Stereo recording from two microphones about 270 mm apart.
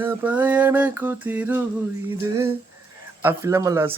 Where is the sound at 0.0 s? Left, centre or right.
Centre.